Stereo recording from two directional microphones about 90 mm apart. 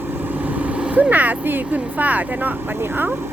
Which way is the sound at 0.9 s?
20° right (ahead or behind).